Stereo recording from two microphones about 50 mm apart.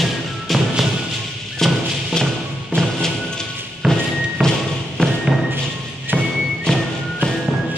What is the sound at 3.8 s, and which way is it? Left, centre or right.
Music, centre.